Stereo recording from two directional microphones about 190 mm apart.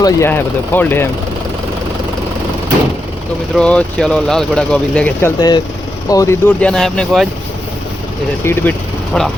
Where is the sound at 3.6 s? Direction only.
5° left (ahead or behind).